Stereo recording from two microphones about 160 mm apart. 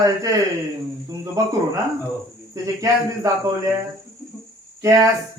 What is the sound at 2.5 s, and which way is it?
Speech, 20° right (ahead or behind).